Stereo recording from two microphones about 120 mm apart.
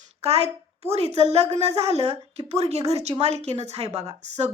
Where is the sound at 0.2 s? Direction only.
60° right (ahead or behind).